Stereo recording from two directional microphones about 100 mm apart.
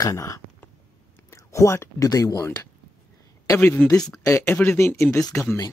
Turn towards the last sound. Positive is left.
turn(degrees=25)  # may be behind; listen again after turning